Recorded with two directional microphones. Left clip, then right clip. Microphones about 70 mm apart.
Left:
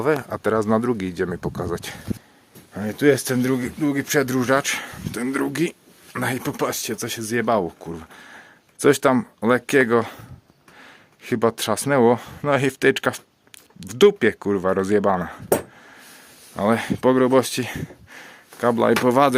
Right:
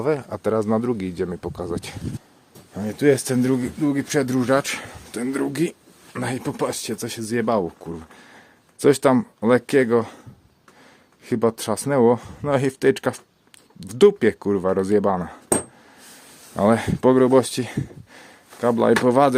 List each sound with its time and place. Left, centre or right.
0.0 s speech: centre
3.2 s speech: centre
3.9 s speech: centre
4.6 s speech: right
6.1 s speech: centre
16.6 s speech: right
17.0 s speech: right
17.6 s a sound: centre
18.8 s speech: right